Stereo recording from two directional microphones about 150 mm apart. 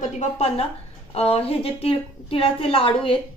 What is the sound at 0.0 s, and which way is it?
A woman's voice, 45° left (ahead or behind).